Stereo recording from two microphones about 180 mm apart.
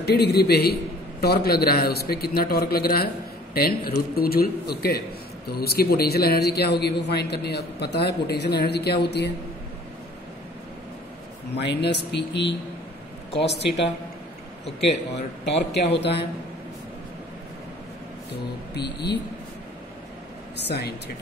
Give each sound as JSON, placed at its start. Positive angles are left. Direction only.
{"t": 0.0, "sound": "a man's voice", "side_deg": 65}
{"t": 11.5, "sound": "speech", "side_deg": 70}
{"t": 14.9, "sound": "speech", "side_deg": 70}
{"t": 18.8, "sound": "speech", "side_deg": 70}
{"t": 20.5, "sound": "a man's voice", "side_deg": 65}